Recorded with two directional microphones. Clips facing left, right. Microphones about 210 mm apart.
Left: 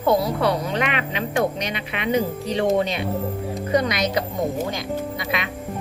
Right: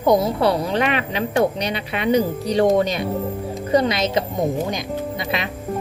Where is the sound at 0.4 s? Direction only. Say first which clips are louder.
Right 3 dB; 35° right (ahead or behind).